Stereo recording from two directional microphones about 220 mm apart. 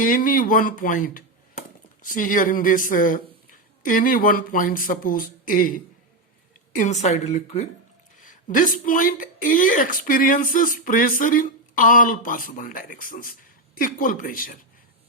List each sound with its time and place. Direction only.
0.0 s speech: 40° left (ahead or behind)